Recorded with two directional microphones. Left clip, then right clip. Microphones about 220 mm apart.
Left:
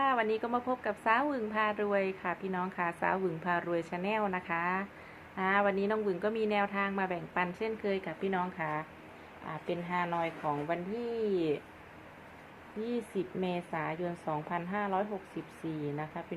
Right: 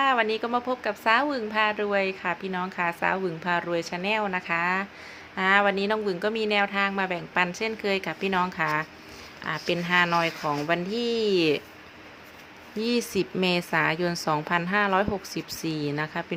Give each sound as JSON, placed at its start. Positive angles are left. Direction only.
{"t": 0.0, "sound": "a woman's voice", "side_deg": -20}
{"t": 12.8, "sound": "a woman's voice", "side_deg": -40}